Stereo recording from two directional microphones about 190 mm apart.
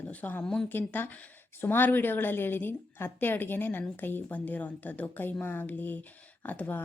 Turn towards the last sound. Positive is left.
turn(degrees=10)  # may be behind; listen again after turning